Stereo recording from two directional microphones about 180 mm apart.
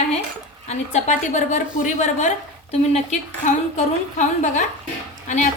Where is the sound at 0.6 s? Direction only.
40° left (ahead or behind).